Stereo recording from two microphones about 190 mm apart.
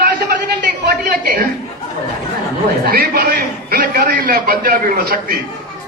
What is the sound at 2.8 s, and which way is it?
A man's voice, 50° right (ahead or behind).